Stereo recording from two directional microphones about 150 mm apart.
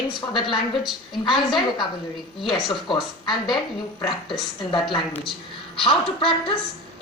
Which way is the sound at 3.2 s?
Centre (ahead or behind).